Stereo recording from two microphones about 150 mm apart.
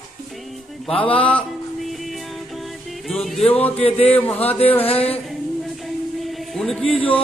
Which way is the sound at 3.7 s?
40° left (ahead or behind).